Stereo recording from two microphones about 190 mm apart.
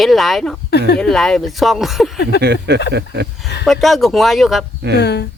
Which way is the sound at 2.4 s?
60° right (ahead or behind).